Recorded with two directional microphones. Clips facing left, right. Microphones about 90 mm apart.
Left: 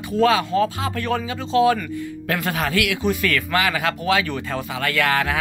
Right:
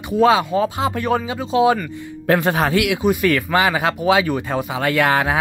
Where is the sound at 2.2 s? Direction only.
25° right (ahead or behind).